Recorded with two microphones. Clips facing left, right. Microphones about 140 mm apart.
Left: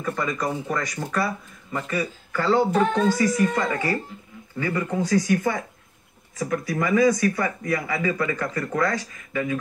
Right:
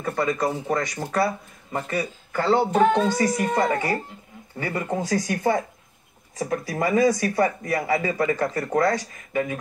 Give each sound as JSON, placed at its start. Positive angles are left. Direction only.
{"t": 0.0, "sound": "speech", "side_deg": -30}
{"t": 5.2, "sound": "speech", "side_deg": -25}